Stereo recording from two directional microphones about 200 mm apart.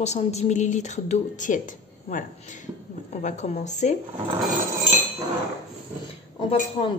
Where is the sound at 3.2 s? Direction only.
35° left (ahead or behind).